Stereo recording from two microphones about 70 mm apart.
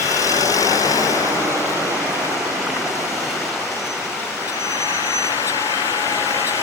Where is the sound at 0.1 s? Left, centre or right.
Left.